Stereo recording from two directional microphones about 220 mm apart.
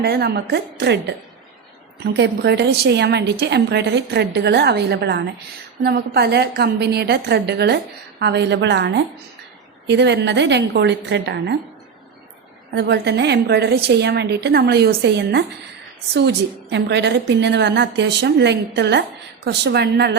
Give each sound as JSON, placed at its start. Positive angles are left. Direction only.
{"t": 0.0, "sound": "a woman's voice", "side_deg": -50}
{"t": 2.1, "sound": "a woman's voice", "side_deg": -50}
{"t": 12.7, "sound": "a woman's voice", "side_deg": -50}